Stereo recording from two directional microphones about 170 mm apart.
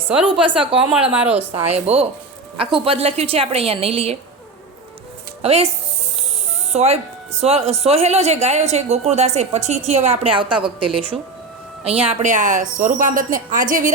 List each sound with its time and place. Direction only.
0.4 s a woman's voice: 30° right (ahead or behind)
1.1 s speech: 10° right (ahead or behind)
1.7 s a woman's voice: 35° right (ahead or behind)
5.4 s speech: 40° right (ahead or behind)
6.7 s a woman's voice: 40° right (ahead or behind)